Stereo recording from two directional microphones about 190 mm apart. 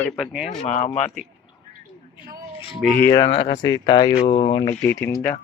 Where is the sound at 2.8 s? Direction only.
5° left (ahead or behind).